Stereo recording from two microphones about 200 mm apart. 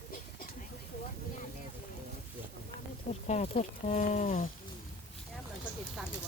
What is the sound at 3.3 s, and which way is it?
Speech, 35° left (ahead or behind).